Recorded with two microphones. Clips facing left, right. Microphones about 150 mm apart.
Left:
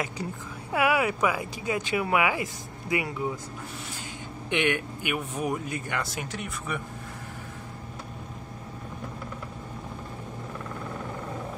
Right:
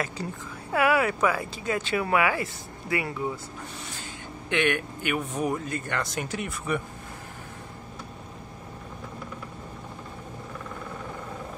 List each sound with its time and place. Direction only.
0.7 s speech: 15° left (ahead or behind)
4.5 s speech: 15° left (ahead or behind)
5.1 s speech: 5° left (ahead or behind)
6.2 s speech: centre (ahead or behind)